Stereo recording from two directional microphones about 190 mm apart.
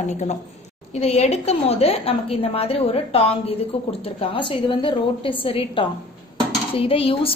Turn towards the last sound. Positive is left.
turn(degrees=30)  # may be behind; listen again after turning